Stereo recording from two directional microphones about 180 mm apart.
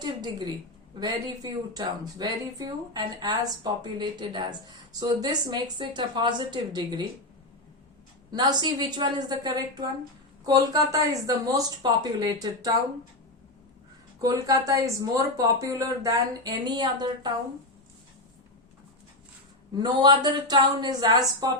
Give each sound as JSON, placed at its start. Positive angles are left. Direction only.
{"t": 0.0, "sound": "a sound", "side_deg": -25}
{"t": 0.9, "sound": "speech", "side_deg": -20}
{"t": 8.3, "sound": "speech", "side_deg": -25}
{"t": 14.2, "sound": "speech", "side_deg": -20}
{"t": 19.7, "sound": "speech", "side_deg": -20}